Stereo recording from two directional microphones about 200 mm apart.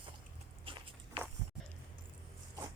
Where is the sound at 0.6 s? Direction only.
25° right (ahead or behind).